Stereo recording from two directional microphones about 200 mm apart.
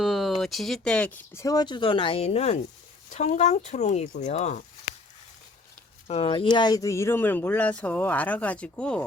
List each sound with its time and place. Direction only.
0.0 s speech: centre (ahead or behind); by 4.6 s 35° left (ahead or behind)
6.1 s speech: 25° left (ahead or behind); by 9.0 s 5° left (ahead or behind)